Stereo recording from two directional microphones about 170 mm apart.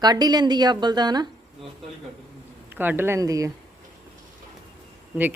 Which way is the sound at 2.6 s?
10° right (ahead or behind).